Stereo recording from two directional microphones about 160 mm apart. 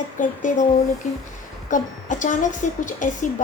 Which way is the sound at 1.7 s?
50° left (ahead or behind).